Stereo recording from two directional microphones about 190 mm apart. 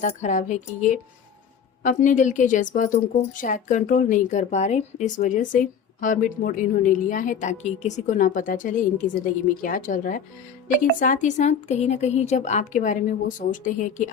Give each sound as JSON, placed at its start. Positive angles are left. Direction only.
{"t": 0.0, "sound": "a woman's voice", "side_deg": 40}